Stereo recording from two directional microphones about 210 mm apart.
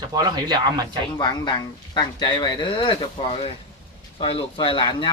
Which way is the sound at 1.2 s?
20° left (ahead or behind).